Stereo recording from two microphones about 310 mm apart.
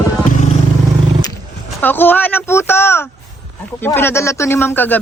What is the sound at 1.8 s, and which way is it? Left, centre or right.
A man's voice, centre.